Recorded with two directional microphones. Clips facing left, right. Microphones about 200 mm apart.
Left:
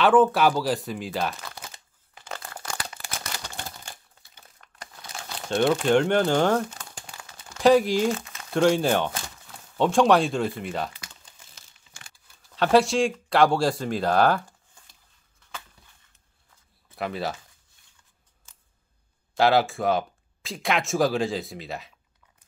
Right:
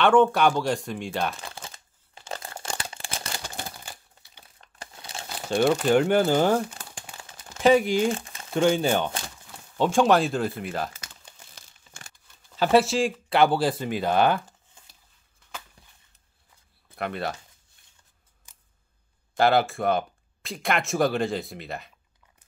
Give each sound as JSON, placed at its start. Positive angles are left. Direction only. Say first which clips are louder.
{"t": 0.0, "sound": "speech", "louder": "even", "side_deg": 0}
{"t": 2.1, "sound": "a sound", "louder": "right 2 dB", "side_deg": -30}
{"t": 3.4, "sound": "typewriter", "louder": "right 1 dB", "side_deg": -10}
{"t": 4.6, "sound": "crumpling", "louder": "right 1 dB", "side_deg": -25}
{"t": 5.3, "sound": "speech", "louder": "even", "side_deg": 0}
{"t": 8.1, "sound": "crumpling", "louder": "left 1 dB", "side_deg": -30}
{"t": 8.5, "sound": "speech", "louder": "left 1 dB", "side_deg": 0}
{"t": 11.5, "sound": "crumpling", "louder": "right 3 dB", "side_deg": -40}
{"t": 12.4, "sound": "speech", "louder": "even", "side_deg": 0}
{"t": 16.9, "sound": "speech", "louder": "left 1 dB", "side_deg": 0}
{"t": 18.5, "sound": "scissors", "louder": "even", "side_deg": -15}
{"t": 19.3, "sound": "speech", "louder": "left 1 dB", "side_deg": 0}